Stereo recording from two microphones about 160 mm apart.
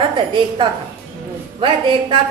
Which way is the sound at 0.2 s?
30° right (ahead or behind).